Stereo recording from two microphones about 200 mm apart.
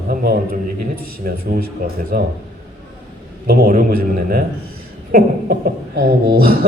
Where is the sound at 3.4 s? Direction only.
50° right (ahead or behind).